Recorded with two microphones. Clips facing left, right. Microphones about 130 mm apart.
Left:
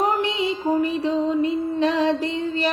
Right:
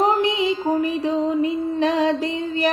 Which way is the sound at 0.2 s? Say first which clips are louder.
Right 3 dB; 15° right (ahead or behind).